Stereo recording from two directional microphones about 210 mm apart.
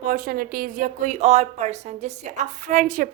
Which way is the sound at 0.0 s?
40° right (ahead or behind).